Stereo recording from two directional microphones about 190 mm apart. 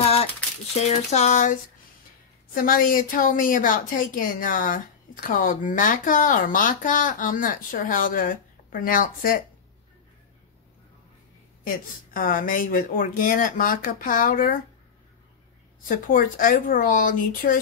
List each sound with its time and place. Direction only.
0.7 s a woman's voice: 35° left (ahead or behind)
11.6 s a woman's voice: 50° left (ahead or behind)
16.1 s a woman's voice: 45° left (ahead or behind)